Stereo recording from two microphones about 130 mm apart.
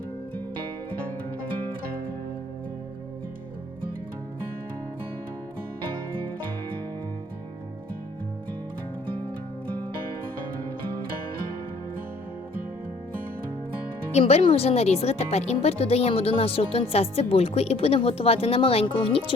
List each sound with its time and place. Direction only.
14.1 s speech: 55° left (ahead or behind)